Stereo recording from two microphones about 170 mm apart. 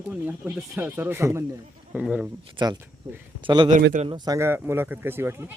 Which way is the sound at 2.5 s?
25° right (ahead or behind).